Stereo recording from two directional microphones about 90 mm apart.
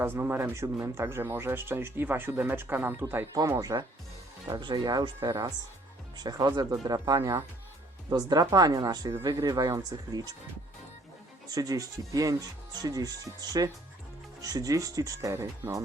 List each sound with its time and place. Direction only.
0.0 s speech: 25° right (ahead or behind)
3.7 s speech: 40° right (ahead or behind)
4.4 s speech: 55° right (ahead or behind)
5.2 s speech: 30° right (ahead or behind)
6.1 s speech: 50° right (ahead or behind)
7.2 s speech: 35° right (ahead or behind)
8.1 s speech: 50° right (ahead or behind)
11.5 s speech: 45° right (ahead or behind)